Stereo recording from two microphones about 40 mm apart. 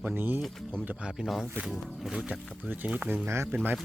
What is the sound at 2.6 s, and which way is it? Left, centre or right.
Speech, right.